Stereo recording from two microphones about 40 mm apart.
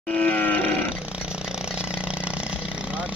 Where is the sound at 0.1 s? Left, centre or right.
Left.